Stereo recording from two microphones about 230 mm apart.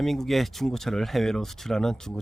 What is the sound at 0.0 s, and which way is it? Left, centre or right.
Speech, centre.